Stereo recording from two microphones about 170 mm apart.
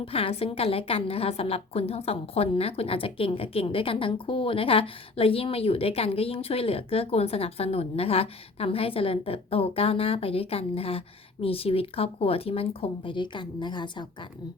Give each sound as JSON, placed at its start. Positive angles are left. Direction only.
{"t": 0.0, "sound": "a woman's voice", "side_deg": 35}